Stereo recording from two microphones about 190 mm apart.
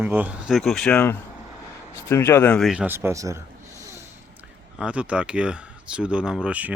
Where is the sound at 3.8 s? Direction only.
15° right (ahead or behind).